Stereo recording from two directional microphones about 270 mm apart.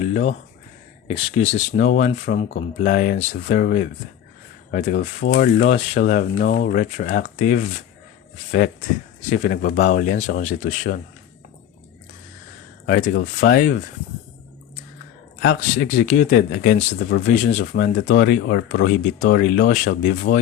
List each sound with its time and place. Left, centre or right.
0.1 s speech: left
12.8 s speech: left
15.4 s speech: left
17.3 s speech: left